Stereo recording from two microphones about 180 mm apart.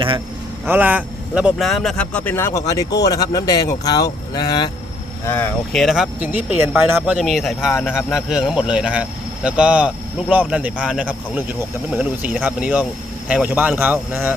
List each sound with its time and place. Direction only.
0.7 s a man's voice: 10° right (ahead or behind); by 4.7 s 20° left (ahead or behind)
5.2 s speech: 10° left (ahead or behind)
7.7 s a man's voice: 10° left (ahead or behind)
8.1 s speech: centre (ahead or behind)